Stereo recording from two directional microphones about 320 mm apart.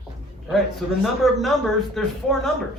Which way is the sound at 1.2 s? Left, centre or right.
Centre.